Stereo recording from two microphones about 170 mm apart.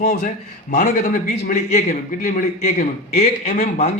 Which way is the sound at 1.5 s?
45° left (ahead or behind).